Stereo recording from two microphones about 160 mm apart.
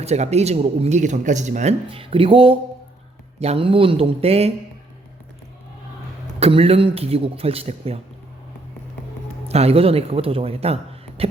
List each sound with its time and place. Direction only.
0.0 s speech: 45° right (ahead or behind)
1.9 s speech: 35° right (ahead or behind)
6.4 s speech: 35° right (ahead or behind)
9.5 s speech: 40° right (ahead or behind)